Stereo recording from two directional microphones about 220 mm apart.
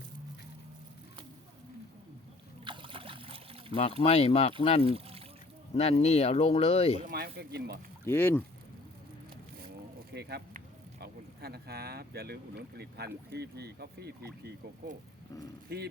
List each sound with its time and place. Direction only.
2.6 s trickle: 25° right (ahead or behind)
4.0 s speech: 30° left (ahead or behind)
4.9 s a sound: 25° right (ahead or behind)
5.7 s speech: 30° left (ahead or behind)
7.0 s speech: 45° right (ahead or behind)
8.0 s speech: 10° left (ahead or behind)
10.2 s a sound: 50° right (ahead or behind)
11.0 s speech: 45° right (ahead or behind)
15.7 s speech: 45° right (ahead or behind)